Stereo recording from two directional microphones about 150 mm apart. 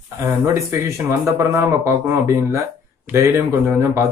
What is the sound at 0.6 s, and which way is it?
Speech, 20° right (ahead or behind).